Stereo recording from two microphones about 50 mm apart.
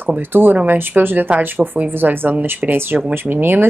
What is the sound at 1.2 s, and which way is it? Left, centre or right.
Speech, right.